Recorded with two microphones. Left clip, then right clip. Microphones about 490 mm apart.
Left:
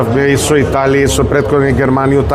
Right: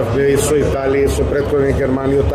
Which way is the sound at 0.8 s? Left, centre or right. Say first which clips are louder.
Left 4 dB; left.